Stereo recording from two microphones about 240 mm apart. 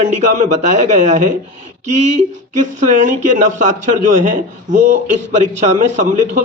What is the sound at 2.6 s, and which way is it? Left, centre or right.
Speech, right.